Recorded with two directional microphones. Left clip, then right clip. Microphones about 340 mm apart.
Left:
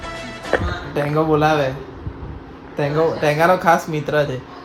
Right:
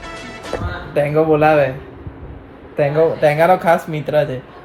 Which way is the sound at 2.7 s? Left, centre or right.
Centre.